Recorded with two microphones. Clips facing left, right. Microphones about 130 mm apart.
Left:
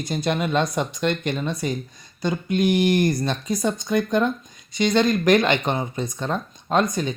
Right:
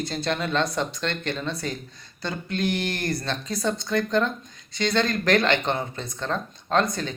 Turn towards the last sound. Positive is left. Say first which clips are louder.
# left 2 dB
turn(degrees=15)  # may be behind; listen again after turning